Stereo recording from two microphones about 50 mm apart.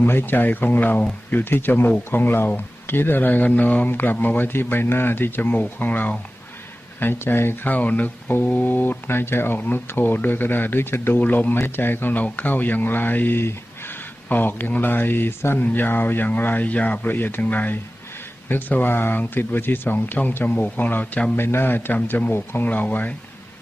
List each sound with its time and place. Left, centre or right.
0.0 s a man's voice: left
3.8 s a man's voice: left
7.7 s a man's voice: left
9.6 s a man's voice: left
11.2 s a man's voice: left
12.1 s speech: left
14.3 s a man's voice: left
15.6 s speech: left
17.0 s speech: left
21.3 s a man's voice: left